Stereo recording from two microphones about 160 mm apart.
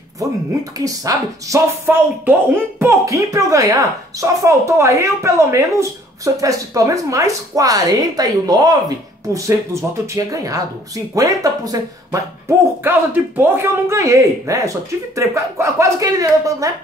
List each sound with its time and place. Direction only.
0.7 s speech: 20° right (ahead or behind)